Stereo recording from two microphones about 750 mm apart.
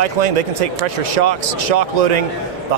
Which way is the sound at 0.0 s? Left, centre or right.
Right.